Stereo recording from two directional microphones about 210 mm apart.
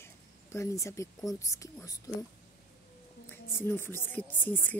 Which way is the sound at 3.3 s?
10° left (ahead or behind).